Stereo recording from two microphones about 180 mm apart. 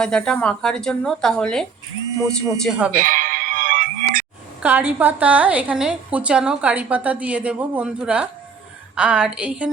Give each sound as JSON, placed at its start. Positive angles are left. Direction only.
{"t": 0.0, "sound": "speech", "side_deg": 5}
{"t": 2.9, "sound": "music", "side_deg": -50}
{"t": 4.6, "sound": "a woman's voice", "side_deg": -10}